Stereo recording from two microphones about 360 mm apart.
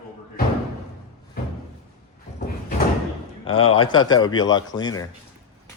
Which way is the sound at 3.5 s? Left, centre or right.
Left.